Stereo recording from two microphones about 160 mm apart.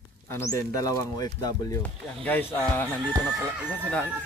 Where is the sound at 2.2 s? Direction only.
10° left (ahead or behind).